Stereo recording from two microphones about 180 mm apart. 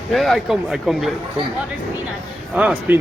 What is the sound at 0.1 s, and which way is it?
Speech, centre (ahead or behind).